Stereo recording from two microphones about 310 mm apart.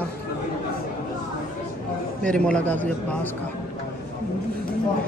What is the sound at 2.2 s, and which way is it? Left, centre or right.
A man's voice, centre.